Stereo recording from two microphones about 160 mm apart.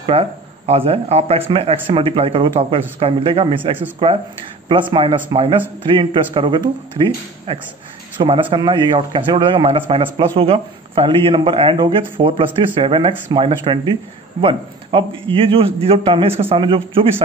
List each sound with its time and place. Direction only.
0.0 s a man's voice: 40° right (ahead or behind)